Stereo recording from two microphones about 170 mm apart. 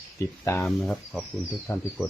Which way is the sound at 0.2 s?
15° left (ahead or behind).